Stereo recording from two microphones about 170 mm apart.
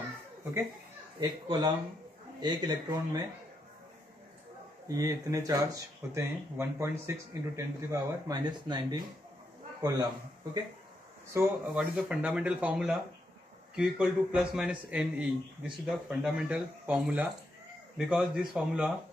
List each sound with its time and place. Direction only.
1.2 s speech: 25° right (ahead or behind)
4.8 s a man's voice: 20° right (ahead or behind)
11.3 s a man's voice: 5° right (ahead or behind)